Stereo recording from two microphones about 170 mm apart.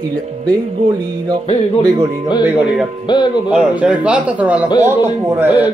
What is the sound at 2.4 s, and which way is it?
A man's voice, 5° right (ahead or behind).